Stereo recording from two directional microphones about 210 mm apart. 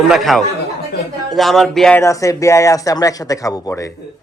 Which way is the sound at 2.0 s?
15° left (ahead or behind).